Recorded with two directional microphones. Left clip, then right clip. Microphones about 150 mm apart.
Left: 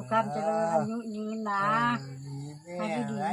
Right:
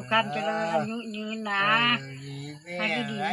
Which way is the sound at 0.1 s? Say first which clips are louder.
Right 2 dB; 5° left (ahead or behind).